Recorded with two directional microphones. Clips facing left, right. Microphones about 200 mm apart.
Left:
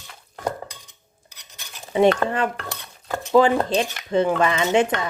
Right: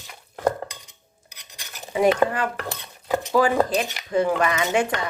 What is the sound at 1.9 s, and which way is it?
Speech, 25° left (ahead or behind).